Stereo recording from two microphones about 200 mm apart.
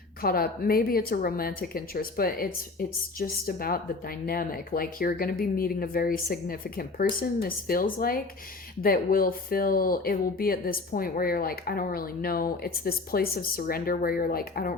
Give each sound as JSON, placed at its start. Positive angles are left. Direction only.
{"t": 0.2, "sound": "speech", "side_deg": 50}